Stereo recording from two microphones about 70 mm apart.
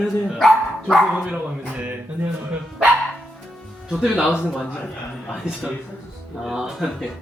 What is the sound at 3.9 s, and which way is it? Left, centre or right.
Speech, centre.